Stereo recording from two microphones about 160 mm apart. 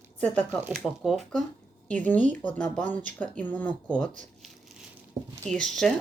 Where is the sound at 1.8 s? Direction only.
10° left (ahead or behind).